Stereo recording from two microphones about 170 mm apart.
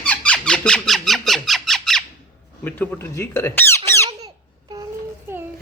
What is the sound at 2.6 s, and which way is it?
Speech, 10° left (ahead or behind).